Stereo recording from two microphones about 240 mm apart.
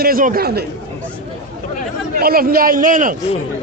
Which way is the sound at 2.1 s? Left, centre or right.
Right.